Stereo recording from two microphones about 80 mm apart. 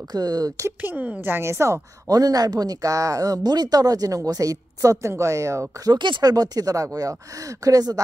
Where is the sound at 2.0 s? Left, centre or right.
Right.